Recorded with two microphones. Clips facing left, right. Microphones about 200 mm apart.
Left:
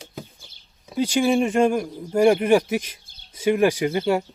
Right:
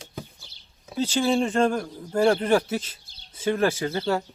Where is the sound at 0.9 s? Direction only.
10° left (ahead or behind).